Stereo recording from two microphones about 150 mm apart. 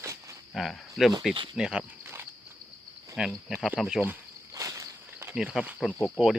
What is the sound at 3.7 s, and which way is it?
Insect, centre (ahead or behind).